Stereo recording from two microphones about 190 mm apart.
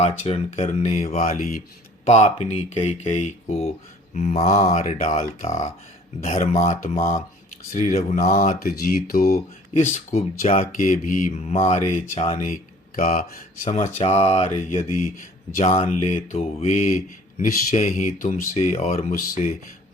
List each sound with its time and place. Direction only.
0.0 s speech: 35° left (ahead or behind); by 9.3 s 50° left (ahead or behind)
9.7 s speech: 40° left (ahead or behind)
13.0 s speech: 45° left (ahead or behind)